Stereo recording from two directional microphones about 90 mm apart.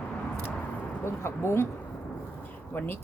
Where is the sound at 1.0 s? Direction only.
30° left (ahead or behind).